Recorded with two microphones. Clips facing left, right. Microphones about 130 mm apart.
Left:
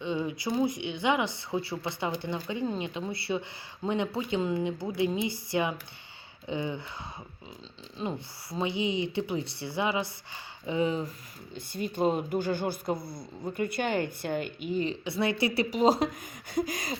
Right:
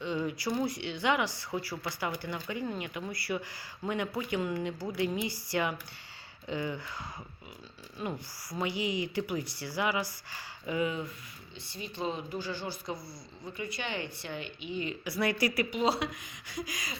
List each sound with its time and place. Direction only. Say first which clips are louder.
0.0 s speech: left 2 dB; 20° left (ahead or behind)
7.9 s speech: left 3 dB; 25° left (ahead or behind)
11.5 s speech: left 8 dB; 50° left (ahead or behind)
15.0 s speech: left 2 dB; 25° left (ahead or behind)
15.7 s speech: left 6 dB; 40° left (ahead or behind)